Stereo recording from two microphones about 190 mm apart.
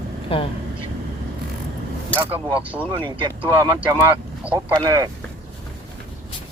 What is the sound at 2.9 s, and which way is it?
Speech, 25° right (ahead or behind).